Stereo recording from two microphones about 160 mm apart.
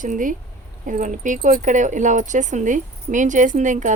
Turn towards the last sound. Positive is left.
turn(degrees=-50)  # may be behind; listen again after turning